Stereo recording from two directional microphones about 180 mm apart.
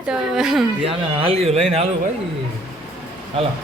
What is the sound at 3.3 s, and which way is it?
Speech, 35° right (ahead or behind).